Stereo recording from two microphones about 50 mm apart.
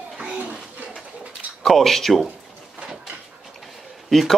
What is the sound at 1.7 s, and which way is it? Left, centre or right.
Speech, centre.